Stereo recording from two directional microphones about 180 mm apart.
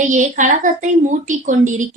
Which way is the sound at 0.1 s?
45° right (ahead or behind).